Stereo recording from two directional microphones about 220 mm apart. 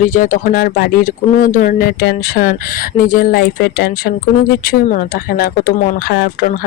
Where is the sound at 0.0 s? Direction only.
35° left (ahead or behind).